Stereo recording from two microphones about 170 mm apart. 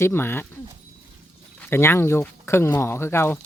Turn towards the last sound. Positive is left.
turn(degrees=15)  # may be behind; listen again after turning